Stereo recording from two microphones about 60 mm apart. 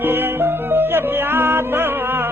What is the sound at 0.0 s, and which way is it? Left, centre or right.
Music, right.